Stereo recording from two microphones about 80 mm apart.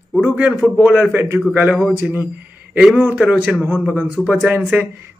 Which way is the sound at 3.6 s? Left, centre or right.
Right.